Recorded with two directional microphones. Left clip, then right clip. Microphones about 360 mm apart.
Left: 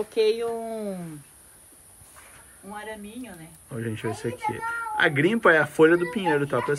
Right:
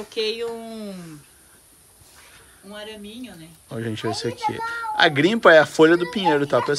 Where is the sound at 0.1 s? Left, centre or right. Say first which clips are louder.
Left 1 dB; centre.